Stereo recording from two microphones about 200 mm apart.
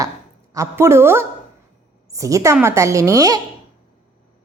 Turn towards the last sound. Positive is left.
turn(degrees=-15)  # may be behind; listen again after turning